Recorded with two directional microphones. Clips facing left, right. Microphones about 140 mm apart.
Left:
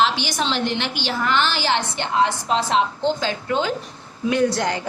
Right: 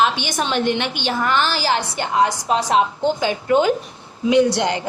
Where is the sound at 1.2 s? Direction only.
45° right (ahead or behind).